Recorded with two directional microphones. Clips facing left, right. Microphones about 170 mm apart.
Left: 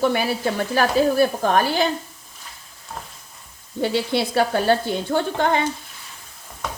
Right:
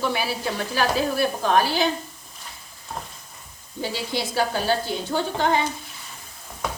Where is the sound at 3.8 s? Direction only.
65° left (ahead or behind).